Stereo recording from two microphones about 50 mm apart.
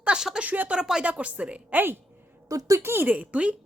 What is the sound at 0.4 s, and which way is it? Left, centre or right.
Speech, right.